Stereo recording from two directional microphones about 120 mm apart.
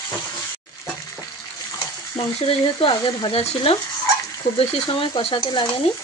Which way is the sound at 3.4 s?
55° left (ahead or behind).